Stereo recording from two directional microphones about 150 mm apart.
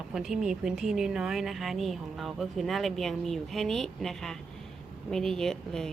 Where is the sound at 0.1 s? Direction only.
5° right (ahead or behind).